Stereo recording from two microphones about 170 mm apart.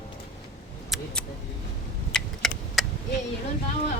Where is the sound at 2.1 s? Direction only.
Centre (ahead or behind).